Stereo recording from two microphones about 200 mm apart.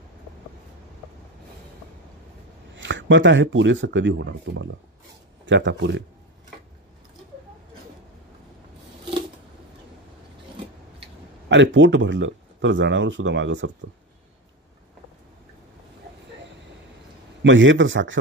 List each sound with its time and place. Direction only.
2.7 s speech: 65° right (ahead or behind)
11.4 s speech: 65° right (ahead or behind)
17.4 s a man's voice: 70° right (ahead or behind)